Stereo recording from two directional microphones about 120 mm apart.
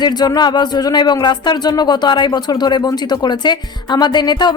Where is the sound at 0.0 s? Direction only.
35° left (ahead or behind).